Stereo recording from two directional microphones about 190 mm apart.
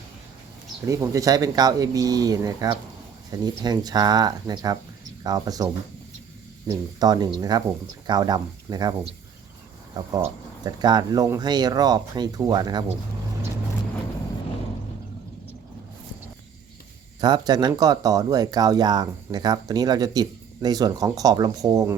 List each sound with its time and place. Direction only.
0.9 s speech: 15° right (ahead or behind)
6.7 s speech: 20° right (ahead or behind)
17.2 s speech: 20° right (ahead or behind)